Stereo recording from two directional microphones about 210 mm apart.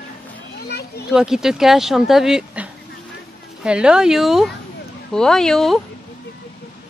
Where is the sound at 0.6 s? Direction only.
50° left (ahead or behind).